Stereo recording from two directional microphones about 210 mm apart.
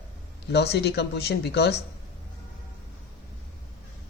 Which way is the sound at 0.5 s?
50° left (ahead or behind).